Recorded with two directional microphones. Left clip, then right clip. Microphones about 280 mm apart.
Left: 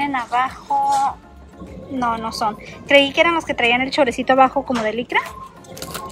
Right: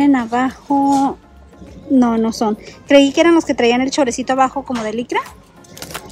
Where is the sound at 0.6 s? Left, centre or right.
Right; by 5.2 s centre.